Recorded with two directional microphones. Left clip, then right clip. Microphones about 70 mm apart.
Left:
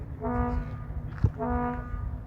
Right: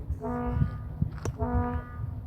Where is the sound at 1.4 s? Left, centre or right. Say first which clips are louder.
Left 2 dB; right.